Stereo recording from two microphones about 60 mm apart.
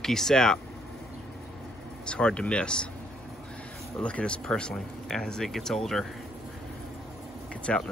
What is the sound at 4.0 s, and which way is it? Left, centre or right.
Speech, centre.